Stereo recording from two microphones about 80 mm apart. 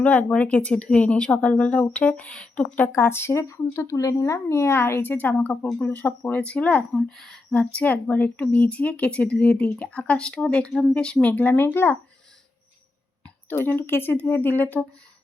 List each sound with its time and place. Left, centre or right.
0.0 s a woman's voice: centre
2.9 s a woman's voice: left
13.7 s speech: left